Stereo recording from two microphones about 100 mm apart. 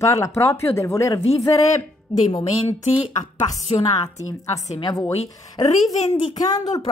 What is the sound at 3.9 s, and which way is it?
Speech, 35° left (ahead or behind).